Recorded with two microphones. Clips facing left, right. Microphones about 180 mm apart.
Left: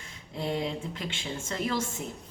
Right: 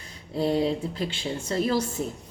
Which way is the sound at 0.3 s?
35° right (ahead or behind).